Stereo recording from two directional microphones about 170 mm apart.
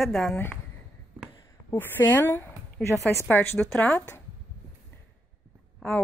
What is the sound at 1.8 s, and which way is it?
A woman's voice, 10° left (ahead or behind).